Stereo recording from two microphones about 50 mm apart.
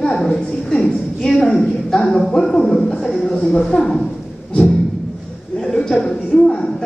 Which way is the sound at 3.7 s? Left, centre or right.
Centre.